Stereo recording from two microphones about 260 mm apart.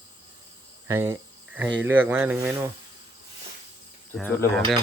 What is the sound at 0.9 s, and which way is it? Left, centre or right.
Cricket, centre.